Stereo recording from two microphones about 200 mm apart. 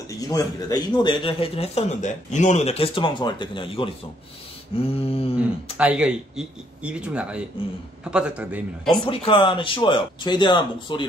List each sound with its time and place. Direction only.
0.1 s a man's voice: 15° left (ahead or behind)
5.4 s speech: 5° right (ahead or behind)
9.0 s a man's voice: 25° left (ahead or behind)